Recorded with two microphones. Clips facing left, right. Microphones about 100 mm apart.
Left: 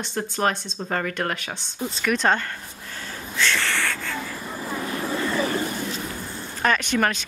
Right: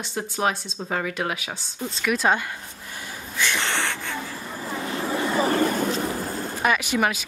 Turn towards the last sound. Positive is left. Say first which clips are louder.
# even
turn(degrees=-10)  # may be behind; listen again after turning